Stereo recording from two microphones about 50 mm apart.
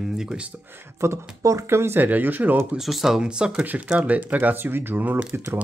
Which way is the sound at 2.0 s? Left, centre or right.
Right.